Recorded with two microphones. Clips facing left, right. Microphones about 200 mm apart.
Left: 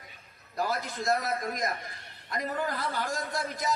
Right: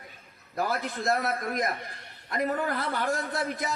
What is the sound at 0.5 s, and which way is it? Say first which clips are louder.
A man's voice: right 2 dB; 60° right (ahead or behind).